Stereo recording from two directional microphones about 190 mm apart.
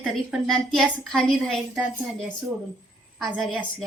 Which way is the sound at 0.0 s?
Centre (ahead or behind).